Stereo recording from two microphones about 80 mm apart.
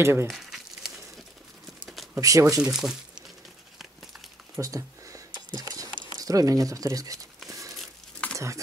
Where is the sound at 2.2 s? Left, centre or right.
Right.